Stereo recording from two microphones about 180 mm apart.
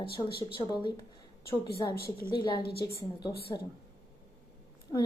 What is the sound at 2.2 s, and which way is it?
Speech, 25° left (ahead or behind).